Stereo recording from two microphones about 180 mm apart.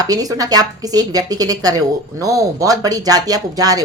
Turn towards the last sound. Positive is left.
turn(degrees=-20)  # may be behind; listen again after turning